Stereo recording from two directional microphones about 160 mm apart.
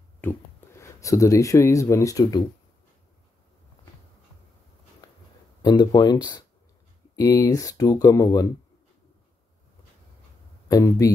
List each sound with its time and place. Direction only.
0.2 s speech: 15° left (ahead or behind)
5.6 s speech: 25° left (ahead or behind)
10.7 s speech: 20° left (ahead or behind)